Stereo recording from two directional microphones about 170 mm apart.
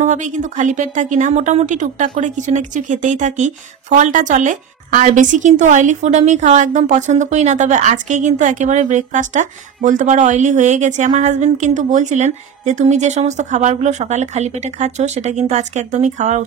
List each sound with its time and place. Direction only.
0.0 s speech: 45° right (ahead or behind)